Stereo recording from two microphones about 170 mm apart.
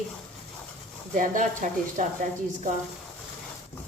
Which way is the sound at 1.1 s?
50° right (ahead or behind).